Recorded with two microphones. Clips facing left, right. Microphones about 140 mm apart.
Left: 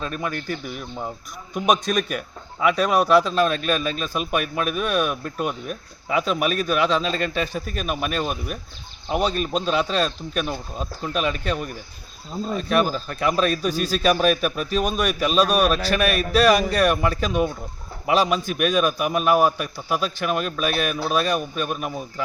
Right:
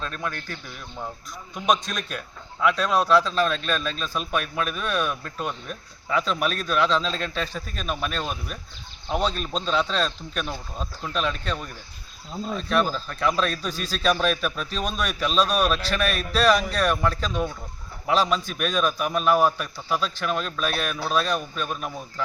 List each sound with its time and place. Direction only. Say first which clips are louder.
0.0 s speech: left 4 dB; 10° left (ahead or behind)
7.0 s speech: left 4 dB; 60° left (ahead or behind)
7.3 s speech: left 5 dB; 10° left (ahead or behind)